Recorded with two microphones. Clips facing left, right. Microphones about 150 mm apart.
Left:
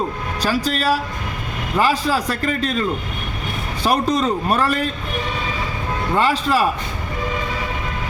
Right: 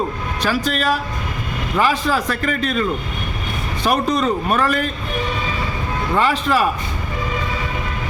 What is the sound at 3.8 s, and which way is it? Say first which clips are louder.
Speech: even; 35° left (ahead or behind).